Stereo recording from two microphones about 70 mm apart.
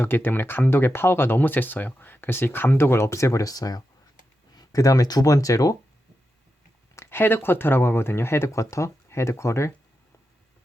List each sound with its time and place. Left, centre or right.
0.0 s speech: left
6.9 s speech: left